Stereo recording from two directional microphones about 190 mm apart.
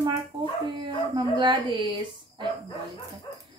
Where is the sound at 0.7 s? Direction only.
25° right (ahead or behind).